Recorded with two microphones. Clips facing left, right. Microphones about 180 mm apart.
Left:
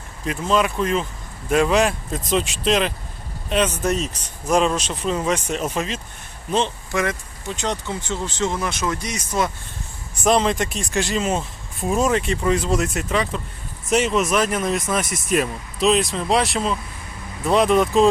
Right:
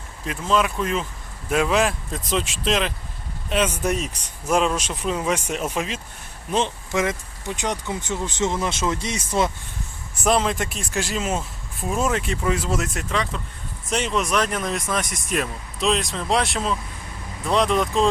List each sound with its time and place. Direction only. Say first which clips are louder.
0.3 s speech: left 2 dB; centre (ahead or behind); by 9.5 s 25° right (ahead or behind)
10.2 s speech: left 3 dB; 5° right (ahead or behind)